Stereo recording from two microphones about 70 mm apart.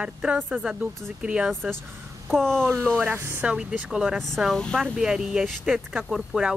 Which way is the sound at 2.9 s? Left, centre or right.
Right.